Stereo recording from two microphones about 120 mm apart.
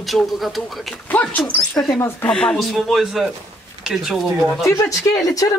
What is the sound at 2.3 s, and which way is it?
Speech, 5° left (ahead or behind).